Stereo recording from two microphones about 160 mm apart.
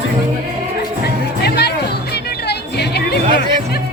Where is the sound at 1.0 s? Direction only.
90° left.